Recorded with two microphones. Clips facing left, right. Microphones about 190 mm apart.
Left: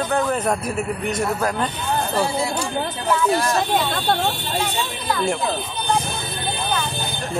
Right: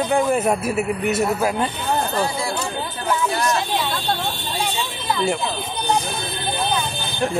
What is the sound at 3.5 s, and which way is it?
Speech, 50° left (ahead or behind).